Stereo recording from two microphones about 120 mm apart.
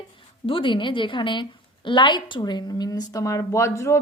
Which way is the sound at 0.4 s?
45° left (ahead or behind).